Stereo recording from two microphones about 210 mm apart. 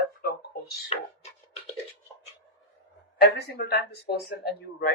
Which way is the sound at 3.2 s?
50° left (ahead or behind).